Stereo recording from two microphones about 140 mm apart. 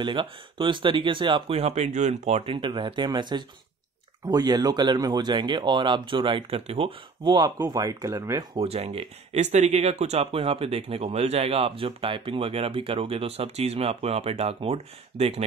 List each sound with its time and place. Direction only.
0.0 s speech: 35° right (ahead or behind); by 2.5 s 55° right (ahead or behind)
2.5 s speech: 35° right (ahead or behind)
8.5 s speech: 45° right (ahead or behind)